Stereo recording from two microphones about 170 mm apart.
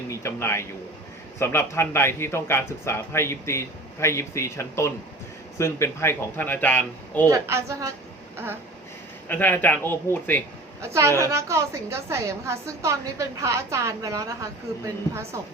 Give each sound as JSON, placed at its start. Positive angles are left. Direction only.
{"t": 0.1, "sound": "a man's voice", "side_deg": 15}
{"t": 7.3, "sound": "a woman's voice", "side_deg": -15}
{"t": 9.3, "sound": "a man's voice", "side_deg": 10}
{"t": 10.8, "sound": "a woman's voice", "side_deg": -15}